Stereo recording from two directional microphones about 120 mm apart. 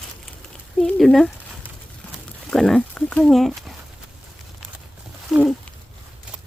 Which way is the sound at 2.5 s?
5° left (ahead or behind).